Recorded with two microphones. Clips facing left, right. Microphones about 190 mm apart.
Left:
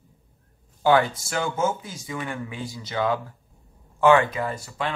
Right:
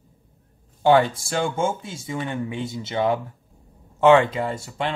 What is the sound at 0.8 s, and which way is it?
Speech, 25° right (ahead or behind).